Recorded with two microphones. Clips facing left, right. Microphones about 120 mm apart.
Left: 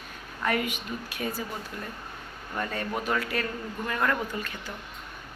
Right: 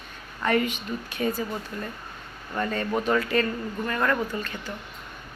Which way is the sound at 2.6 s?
5° left (ahead or behind).